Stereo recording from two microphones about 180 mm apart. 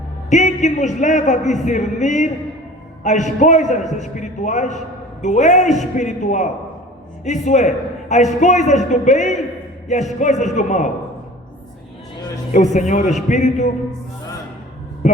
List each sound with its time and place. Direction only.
0.3 s a man's voice: 40° left (ahead or behind)
12.5 s a man's voice: 40° left (ahead or behind)
15.0 s a sound: 40° left (ahead or behind)